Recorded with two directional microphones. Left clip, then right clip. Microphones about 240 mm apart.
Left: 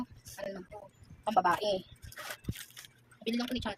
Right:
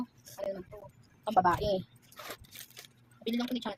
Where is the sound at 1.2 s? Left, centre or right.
Centre.